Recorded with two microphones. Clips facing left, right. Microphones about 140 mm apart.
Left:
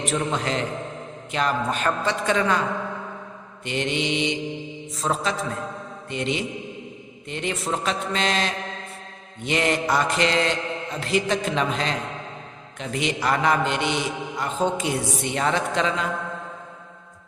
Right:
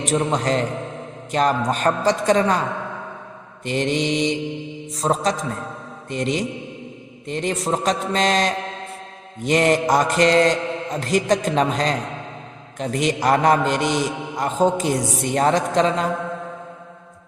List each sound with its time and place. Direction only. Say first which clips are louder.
0.0 s a man's voice: right 4 dB; 35° right (ahead or behind)
3.6 s a man's voice: right 4 dB; 40° right (ahead or behind)
9.4 s mantra: right 6 dB; 45° right (ahead or behind)
12.8 s a man's voice: right 5 dB; 40° right (ahead or behind)